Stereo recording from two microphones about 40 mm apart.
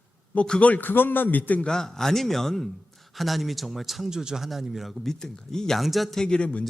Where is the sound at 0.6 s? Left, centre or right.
Left.